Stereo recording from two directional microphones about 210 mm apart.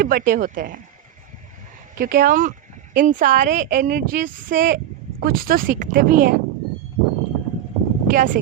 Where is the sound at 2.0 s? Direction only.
40° right (ahead or behind).